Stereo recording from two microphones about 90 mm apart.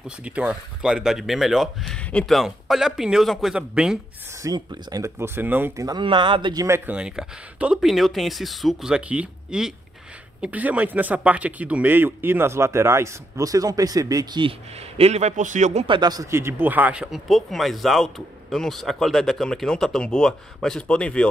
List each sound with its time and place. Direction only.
0.2 s speech: 15° right (ahead or behind)
1.9 s speech: 10° left (ahead or behind)
2.3 s speech: centre (ahead or behind)
4.4 s speech: 45° right (ahead or behind)
5.0 s speech: 25° right (ahead or behind)
5.9 s speech: 60° right (ahead or behind)
6.9 s speech: 10° right (ahead or behind)
8.9 s speech: 10° right (ahead or behind); by 14.4 s 45° right (ahead or behind)
15.0 s a man's voice: 90° right
15.9 s speech: 50° right (ahead or behind)
16.3 s speech: 30° right (ahead or behind)
17.1 s speech: centre (ahead or behind)